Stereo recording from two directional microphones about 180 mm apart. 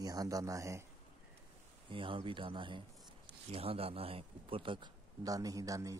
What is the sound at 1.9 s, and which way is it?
A man's voice, 30° right (ahead or behind).